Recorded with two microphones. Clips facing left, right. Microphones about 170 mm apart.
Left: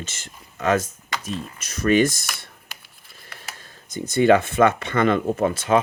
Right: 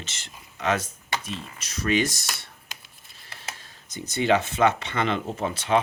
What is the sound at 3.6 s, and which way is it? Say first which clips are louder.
Speech: left 7 dB; 50° left (ahead or behind).